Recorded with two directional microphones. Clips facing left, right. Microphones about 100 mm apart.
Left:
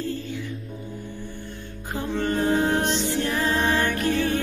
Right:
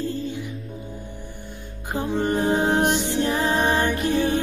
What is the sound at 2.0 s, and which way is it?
Music, 20° right (ahead or behind).